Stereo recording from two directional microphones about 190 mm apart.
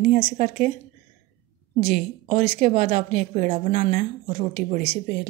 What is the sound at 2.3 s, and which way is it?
A woman's voice, 40° right (ahead or behind).